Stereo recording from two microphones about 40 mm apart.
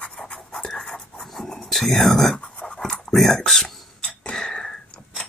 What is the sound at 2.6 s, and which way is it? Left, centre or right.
Writing, centre.